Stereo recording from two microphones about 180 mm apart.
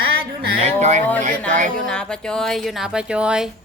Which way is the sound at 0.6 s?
40° right (ahead or behind).